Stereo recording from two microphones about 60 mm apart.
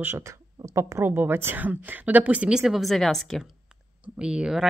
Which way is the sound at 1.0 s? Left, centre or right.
Right.